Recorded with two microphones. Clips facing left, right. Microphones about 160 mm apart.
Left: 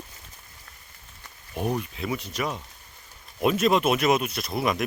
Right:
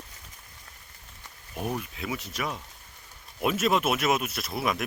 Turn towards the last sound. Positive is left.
turn(degrees=0)  # may be behind; listen again after turning